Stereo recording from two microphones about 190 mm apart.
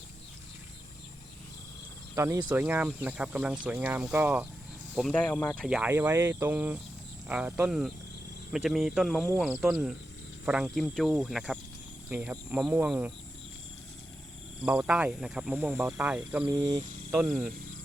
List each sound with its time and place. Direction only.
2.1 s speech: 15° right (ahead or behind)
4.9 s speech: 5° left (ahead or behind)
5.6 s speech: 5° right (ahead or behind)
14.6 s speech: 5° right (ahead or behind)
16.8 s speech: 45° right (ahead or behind)